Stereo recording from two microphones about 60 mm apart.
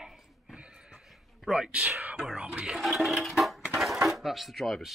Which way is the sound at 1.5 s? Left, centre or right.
Centre.